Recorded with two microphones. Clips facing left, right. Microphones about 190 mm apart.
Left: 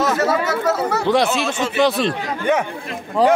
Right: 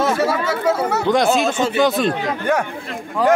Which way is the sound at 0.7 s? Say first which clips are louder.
Right 2 dB; 10° right (ahead or behind).